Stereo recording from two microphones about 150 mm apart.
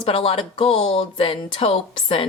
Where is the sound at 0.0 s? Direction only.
40° left (ahead or behind).